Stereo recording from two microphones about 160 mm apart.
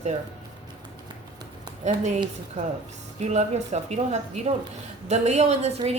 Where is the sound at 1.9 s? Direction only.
45° right (ahead or behind).